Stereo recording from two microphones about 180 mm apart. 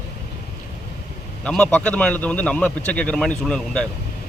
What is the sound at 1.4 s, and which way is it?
A man's voice, 5° left (ahead or behind).